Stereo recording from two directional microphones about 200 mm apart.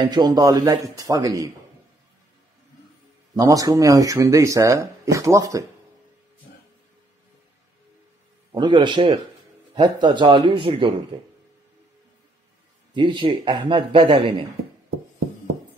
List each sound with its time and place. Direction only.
0.0 s a man's voice: 20° right (ahead or behind)
3.3 s speech: 15° right (ahead or behind)
8.5 s a man's voice: 20° right (ahead or behind)
12.9 s a man's voice: 25° right (ahead or behind)